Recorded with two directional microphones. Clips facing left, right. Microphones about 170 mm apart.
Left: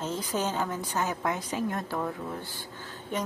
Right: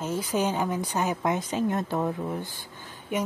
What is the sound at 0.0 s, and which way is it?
Speech, 10° right (ahead or behind).